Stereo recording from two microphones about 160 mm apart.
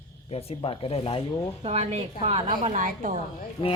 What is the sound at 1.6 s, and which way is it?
A woman's voice, 40° right (ahead or behind).